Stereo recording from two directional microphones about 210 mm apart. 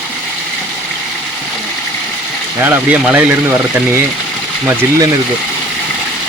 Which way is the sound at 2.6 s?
10° right (ahead or behind).